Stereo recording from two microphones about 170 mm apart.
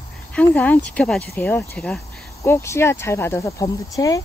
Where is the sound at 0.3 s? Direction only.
10° left (ahead or behind).